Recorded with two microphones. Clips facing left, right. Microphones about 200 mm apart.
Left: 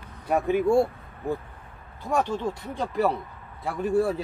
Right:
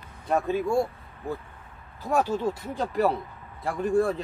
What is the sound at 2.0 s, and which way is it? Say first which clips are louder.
Speech: right 1 dB; 5° right (ahead or behind).